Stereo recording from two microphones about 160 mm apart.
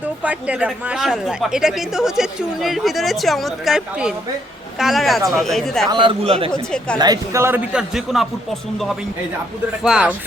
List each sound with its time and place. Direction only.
0.2 s speech: 10° right (ahead or behind)
5.9 s a man's voice: 30° right (ahead or behind)
6.5 s speech: 5° left (ahead or behind)
7.0 s a man's voice: 20° right (ahead or behind); by 8.3 s centre (ahead or behind)
9.8 s speech: 5° right (ahead or behind)